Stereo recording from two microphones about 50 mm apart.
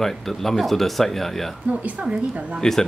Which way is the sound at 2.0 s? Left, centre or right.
Right.